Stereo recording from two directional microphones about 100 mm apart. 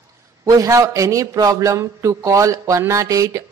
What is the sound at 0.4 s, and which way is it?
A man's voice, 35° right (ahead or behind).